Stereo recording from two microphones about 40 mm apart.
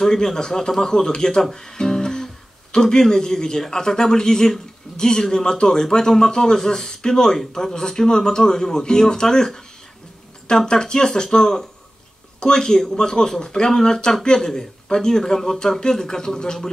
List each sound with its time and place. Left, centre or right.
0.0 s speech: centre